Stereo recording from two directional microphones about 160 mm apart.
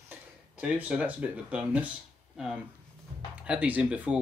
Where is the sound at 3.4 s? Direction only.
10° right (ahead or behind).